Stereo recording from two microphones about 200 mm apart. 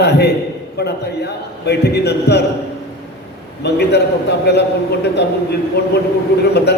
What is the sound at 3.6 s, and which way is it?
Speech, 55° left (ahead or behind).